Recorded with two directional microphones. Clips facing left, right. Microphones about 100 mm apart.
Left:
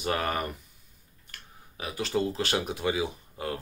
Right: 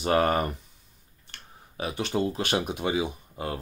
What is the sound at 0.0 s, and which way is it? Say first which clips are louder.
Speech: right 6 dB; 30° right (ahead or behind).